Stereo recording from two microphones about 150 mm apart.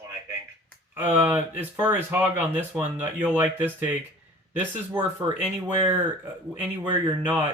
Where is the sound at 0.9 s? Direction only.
10° right (ahead or behind).